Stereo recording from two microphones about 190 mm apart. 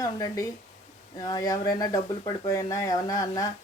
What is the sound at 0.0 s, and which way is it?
Speech, 20° left (ahead or behind).